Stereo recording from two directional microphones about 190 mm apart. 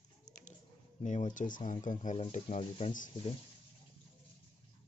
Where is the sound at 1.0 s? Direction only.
40° left (ahead or behind).